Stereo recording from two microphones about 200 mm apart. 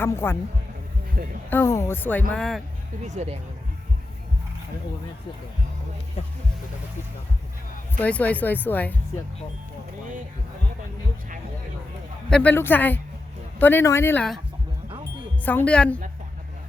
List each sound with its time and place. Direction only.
0.0 s speech: 10° left (ahead or behind)
1.1 s speech: 45° right (ahead or behind)
1.5 s speech: 10° left (ahead or behind)
3.0 s speech: 35° right (ahead or behind)
7.9 s speech: 10° left (ahead or behind)
12.3 s speech: 10° left (ahead or behind)
15.4 s speech: 5° left (ahead or behind)